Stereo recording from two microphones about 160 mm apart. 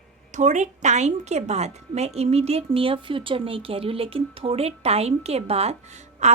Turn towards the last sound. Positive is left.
turn(degrees=-45)  # may be behind; listen again after turning